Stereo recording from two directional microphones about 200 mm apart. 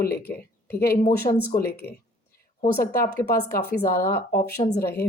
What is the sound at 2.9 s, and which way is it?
Speech, 50° left (ahead or behind).